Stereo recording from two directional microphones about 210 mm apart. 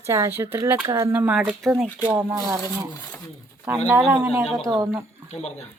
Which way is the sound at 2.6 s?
10° left (ahead or behind).